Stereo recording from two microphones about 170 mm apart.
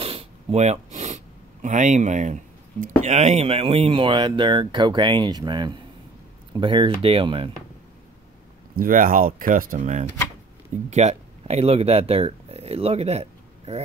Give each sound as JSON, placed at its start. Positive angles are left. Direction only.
{"t": 0.0, "sound": "speech", "side_deg": -35}
{"t": 8.7, "sound": "speech", "side_deg": -55}